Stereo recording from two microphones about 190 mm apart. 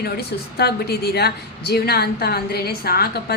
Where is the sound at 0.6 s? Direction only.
55° left (ahead or behind).